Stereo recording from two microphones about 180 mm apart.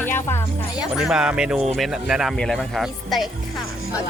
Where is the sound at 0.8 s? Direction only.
5° right (ahead or behind).